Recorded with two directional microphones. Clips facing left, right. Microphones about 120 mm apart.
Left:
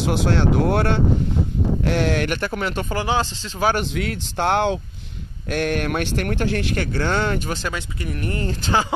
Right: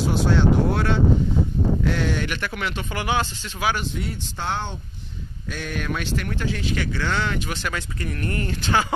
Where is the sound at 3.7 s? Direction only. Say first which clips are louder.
Left 5 dB; 80° left; by 7.6 s 45° left (ahead or behind).